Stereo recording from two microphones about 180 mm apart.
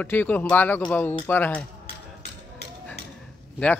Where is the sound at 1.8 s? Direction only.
35° left (ahead or behind).